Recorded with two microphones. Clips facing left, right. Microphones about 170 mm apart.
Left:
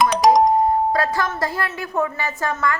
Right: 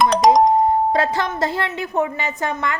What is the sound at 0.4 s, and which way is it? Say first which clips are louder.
Speech: right 1 dB; 20° right (ahead or behind).